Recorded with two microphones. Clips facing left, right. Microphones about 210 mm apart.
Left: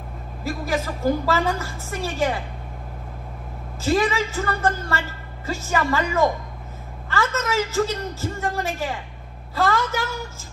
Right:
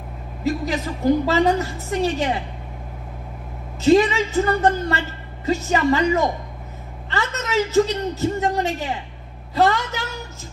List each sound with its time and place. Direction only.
0.4 s a woman's voice: 20° right (ahead or behind)
3.8 s a woman's voice: 20° right (ahead or behind)